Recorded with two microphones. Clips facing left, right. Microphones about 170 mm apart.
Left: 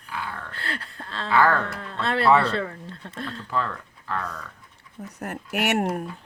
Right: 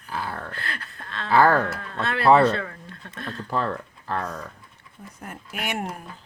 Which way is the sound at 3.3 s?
45° right (ahead or behind).